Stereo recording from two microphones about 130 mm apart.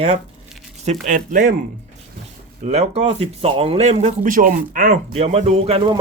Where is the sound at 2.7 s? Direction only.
55° right (ahead or behind).